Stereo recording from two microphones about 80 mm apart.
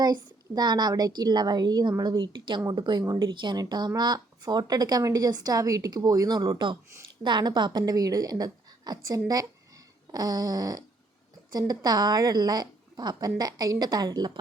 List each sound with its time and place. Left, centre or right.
0.0 s speech: right
3.2 s speech: right
10.1 s fart: right
11.5 s speech: right